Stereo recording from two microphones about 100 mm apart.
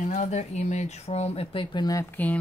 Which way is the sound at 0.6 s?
90° left.